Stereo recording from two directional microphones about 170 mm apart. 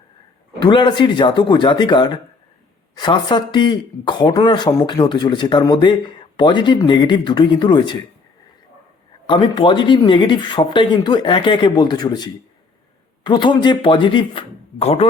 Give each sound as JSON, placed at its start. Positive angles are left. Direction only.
{"t": 0.6, "sound": "a man's voice", "side_deg": 25}
{"t": 9.2, "sound": "a man's voice", "side_deg": 30}